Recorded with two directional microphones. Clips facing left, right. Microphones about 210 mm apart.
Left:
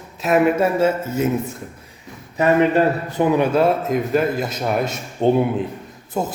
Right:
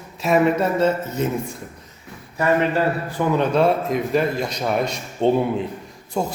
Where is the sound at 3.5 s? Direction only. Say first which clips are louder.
Left 1 dB; centre (ahead or behind).